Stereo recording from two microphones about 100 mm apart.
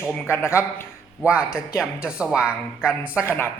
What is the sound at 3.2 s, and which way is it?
Speech, 25° left (ahead or behind).